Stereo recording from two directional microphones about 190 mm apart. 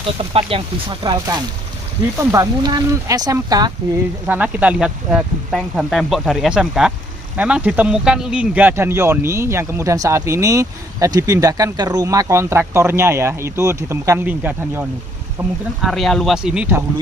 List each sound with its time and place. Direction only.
0.2 s speech: 30° right (ahead or behind)
4.3 s speech: 10° right (ahead or behind)